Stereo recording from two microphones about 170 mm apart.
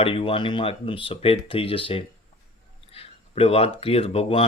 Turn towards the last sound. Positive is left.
turn(degrees=35)  # may be behind; listen again after turning